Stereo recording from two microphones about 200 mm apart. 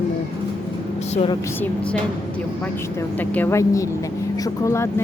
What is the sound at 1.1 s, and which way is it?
Speech, 30° left (ahead or behind).